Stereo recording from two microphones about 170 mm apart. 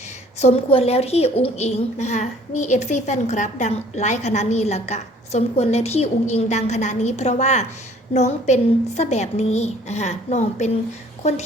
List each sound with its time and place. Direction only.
0.3 s a woman's voice: 40° left (ahead or behind)